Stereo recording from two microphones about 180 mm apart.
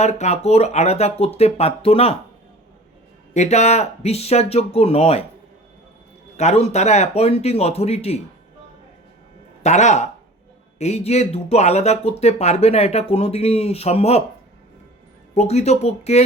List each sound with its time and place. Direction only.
0.0 s speech: 40° left (ahead or behind)
3.3 s speech: 40° left (ahead or behind)
6.3 s speech: 40° left (ahead or behind)
9.6 s speech: 40° left (ahead or behind)
15.4 s speech: 35° left (ahead or behind)